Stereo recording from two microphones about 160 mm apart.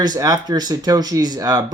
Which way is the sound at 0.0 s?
25° right (ahead or behind).